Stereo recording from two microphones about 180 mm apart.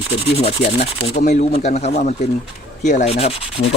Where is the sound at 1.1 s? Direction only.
60° left (ahead or behind).